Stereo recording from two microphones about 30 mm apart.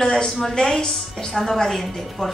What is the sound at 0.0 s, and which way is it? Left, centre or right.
A woman's voice, centre.